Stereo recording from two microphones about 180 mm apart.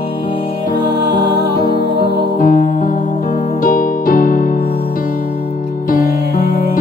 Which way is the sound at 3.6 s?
50° left (ahead or behind).